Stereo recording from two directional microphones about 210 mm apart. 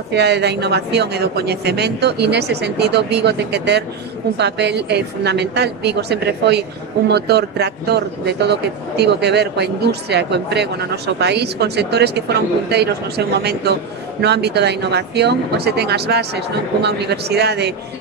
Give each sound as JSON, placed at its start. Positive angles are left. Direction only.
{"t": 0.1, "sound": "a woman's voice", "side_deg": -55}